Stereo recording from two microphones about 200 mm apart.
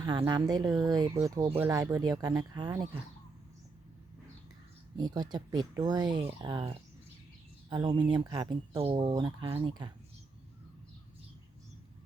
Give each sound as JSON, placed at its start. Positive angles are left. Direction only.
{"t": 0.0, "sound": "speech", "side_deg": -20}
{"t": 4.9, "sound": "speech", "side_deg": -20}